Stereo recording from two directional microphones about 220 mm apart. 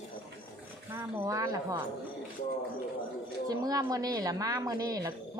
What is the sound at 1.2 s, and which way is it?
Speech, 15° right (ahead or behind).